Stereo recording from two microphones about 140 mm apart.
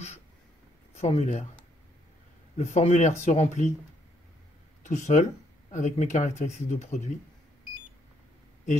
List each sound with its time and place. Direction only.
0.9 s speech: 50° left (ahead or behind)
2.5 s speech: 50° left (ahead or behind)
4.8 s speech: 60° left (ahead or behind)